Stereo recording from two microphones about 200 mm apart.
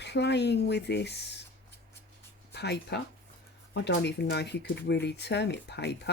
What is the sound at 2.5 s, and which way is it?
A woman's voice, 55° left (ahead or behind).